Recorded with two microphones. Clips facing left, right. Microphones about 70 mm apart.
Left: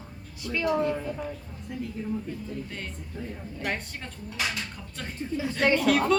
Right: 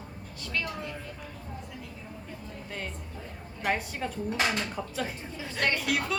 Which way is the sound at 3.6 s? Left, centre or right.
Centre.